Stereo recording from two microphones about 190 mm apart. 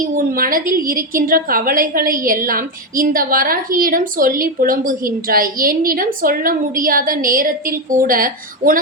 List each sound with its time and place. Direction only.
0.0 s a woman's voice: 50° right (ahead or behind)